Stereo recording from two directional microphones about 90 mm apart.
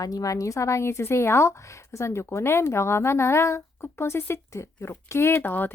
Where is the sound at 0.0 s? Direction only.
40° left (ahead or behind).